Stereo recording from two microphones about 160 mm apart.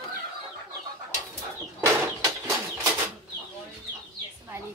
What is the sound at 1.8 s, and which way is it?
Chicken, 15° right (ahead or behind).